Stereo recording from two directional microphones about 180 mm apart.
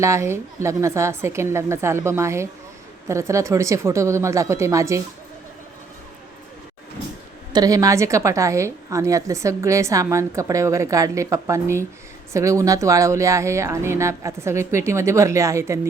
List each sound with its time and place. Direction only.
0.0 s a woman's voice: 15° right (ahead or behind)
7.5 s a woman's voice: 20° right (ahead or behind)